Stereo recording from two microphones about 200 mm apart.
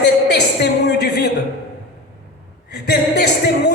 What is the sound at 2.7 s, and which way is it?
A man's voice, 55° left (ahead or behind).